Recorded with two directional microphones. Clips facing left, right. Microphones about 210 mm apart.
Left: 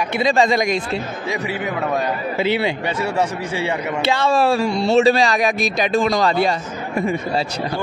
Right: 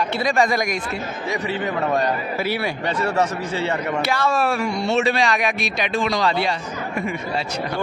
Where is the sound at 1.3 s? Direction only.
10° left (ahead or behind).